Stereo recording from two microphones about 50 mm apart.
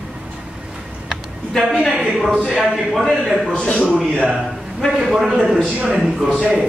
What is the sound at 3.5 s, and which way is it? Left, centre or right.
Speech, left.